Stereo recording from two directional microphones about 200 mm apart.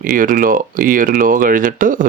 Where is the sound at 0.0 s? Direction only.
45° right (ahead or behind).